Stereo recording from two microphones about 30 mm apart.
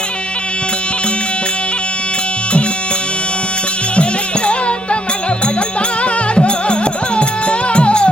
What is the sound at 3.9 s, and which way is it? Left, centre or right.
Music, left.